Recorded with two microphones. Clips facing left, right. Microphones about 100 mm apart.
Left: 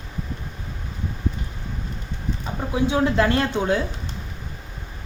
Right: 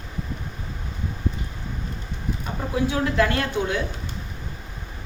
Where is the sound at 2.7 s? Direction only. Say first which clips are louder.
Left 2 dB; 25° left (ahead or behind).